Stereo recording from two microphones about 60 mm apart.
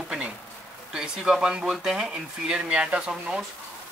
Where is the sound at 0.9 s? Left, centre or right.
Centre.